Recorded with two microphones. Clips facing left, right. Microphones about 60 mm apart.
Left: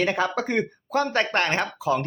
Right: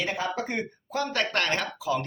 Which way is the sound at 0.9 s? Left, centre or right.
Left.